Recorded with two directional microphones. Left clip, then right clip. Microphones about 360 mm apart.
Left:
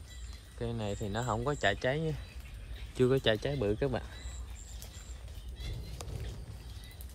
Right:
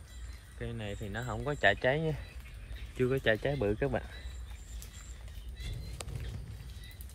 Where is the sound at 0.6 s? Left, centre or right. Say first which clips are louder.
Left 4 dB; centre.